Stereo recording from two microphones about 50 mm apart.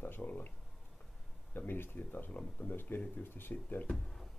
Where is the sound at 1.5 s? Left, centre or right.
Left.